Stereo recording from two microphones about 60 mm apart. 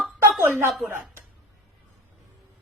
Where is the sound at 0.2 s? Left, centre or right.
Right.